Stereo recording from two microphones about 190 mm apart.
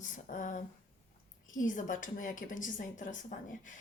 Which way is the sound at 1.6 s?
45° left (ahead or behind).